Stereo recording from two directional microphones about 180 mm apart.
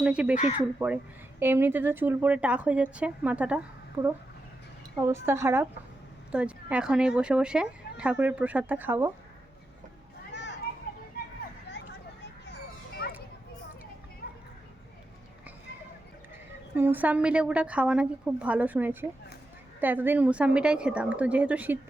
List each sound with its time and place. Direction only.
0.0 s speech: 5° right (ahead or behind)
4.0 s speech: 20° right (ahead or behind)
13.0 s children playing: 60° left (ahead or behind)
16.7 s speech: 10° right (ahead or behind)